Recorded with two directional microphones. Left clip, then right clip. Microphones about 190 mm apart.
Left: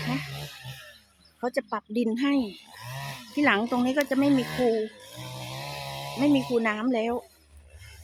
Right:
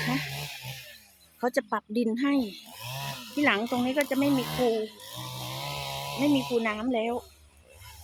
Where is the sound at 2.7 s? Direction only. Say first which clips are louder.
Right 2 dB; 60° right (ahead or behind).